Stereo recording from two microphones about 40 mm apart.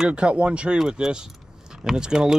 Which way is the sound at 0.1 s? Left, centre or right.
Right.